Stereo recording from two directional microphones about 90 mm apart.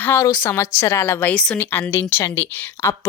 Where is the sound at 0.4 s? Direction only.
25° left (ahead or behind).